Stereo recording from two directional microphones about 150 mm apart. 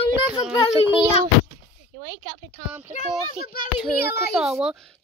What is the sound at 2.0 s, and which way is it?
Speech, 45° right (ahead or behind).